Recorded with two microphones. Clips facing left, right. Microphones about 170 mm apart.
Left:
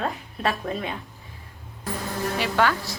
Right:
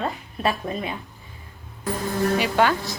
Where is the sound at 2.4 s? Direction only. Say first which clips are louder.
Right 2 dB; 20° right (ahead or behind).